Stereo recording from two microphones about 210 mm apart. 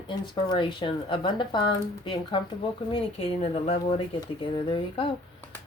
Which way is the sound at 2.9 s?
25° left (ahead or behind).